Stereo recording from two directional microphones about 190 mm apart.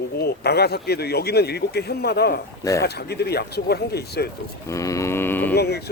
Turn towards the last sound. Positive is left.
turn(degrees=60)  # may be behind; listen again after turning